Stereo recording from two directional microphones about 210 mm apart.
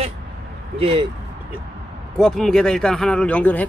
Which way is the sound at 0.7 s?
25° right (ahead or behind).